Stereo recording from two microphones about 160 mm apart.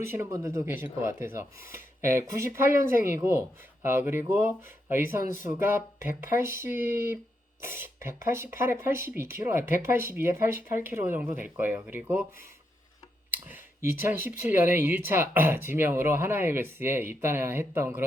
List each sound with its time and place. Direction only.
0.1 s speech: 20° right (ahead or behind)
13.3 s clicking: 10° right (ahead or behind)
14.0 s speech: 15° right (ahead or behind)